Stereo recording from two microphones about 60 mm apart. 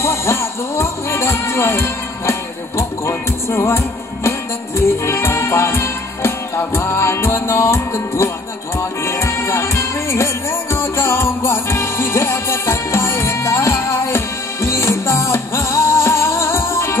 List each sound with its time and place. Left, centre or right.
0.0 s music: left